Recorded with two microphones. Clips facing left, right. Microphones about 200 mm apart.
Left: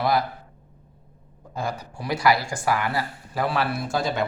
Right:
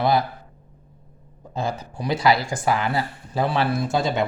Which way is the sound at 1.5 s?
25° right (ahead or behind).